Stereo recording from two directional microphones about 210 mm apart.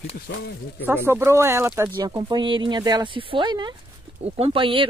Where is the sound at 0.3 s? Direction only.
50° left (ahead or behind).